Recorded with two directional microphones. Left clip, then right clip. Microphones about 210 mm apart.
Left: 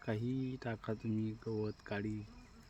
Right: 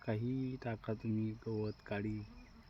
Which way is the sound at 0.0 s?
5° left (ahead or behind).